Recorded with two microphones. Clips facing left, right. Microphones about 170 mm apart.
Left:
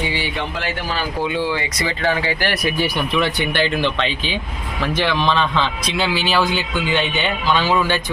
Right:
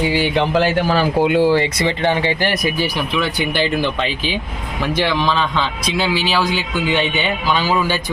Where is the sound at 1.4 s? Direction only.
35° right (ahead or behind).